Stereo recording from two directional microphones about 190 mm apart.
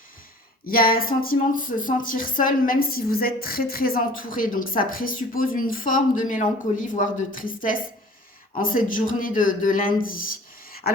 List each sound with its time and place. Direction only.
0.6 s speech: 50° left (ahead or behind)